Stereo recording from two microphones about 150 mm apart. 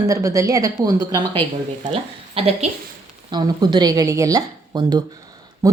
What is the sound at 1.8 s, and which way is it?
Speech, 35° right (ahead or behind).